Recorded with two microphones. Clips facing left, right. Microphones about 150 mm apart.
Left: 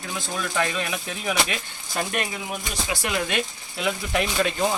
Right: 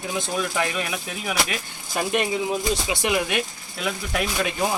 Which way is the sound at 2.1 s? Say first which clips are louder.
Right 6 dB; 20° right (ahead or behind).